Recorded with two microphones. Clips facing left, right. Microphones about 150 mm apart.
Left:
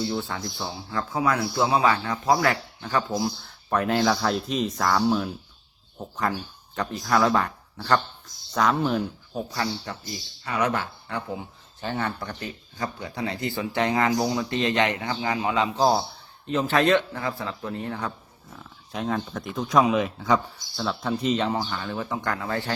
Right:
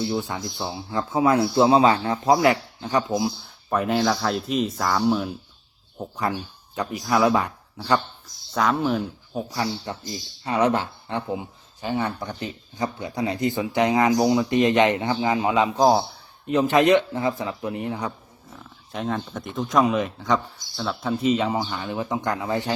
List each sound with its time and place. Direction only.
0.1 s speech: 15° right (ahead or behind); by 9.4 s centre (ahead or behind)
9.5 s speech: 15° right (ahead or behind)
18.5 s speech: centre (ahead or behind); by 22.7 s 20° right (ahead or behind)